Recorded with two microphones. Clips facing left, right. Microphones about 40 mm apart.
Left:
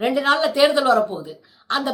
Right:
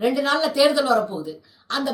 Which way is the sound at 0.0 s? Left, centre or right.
Left.